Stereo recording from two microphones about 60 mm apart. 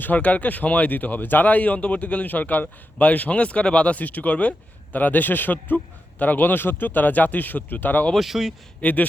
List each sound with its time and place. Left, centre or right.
0.0 s speech: left
8.1 s speech: centre
8.8 s speech: left